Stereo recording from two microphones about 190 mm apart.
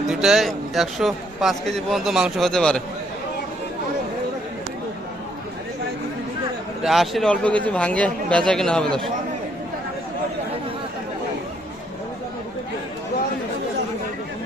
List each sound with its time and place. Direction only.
0.1 s speech: centre (ahead or behind)
6.8 s speech: centre (ahead or behind)